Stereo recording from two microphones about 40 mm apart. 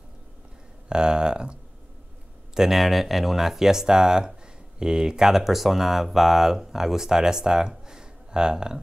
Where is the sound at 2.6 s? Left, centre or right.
Centre.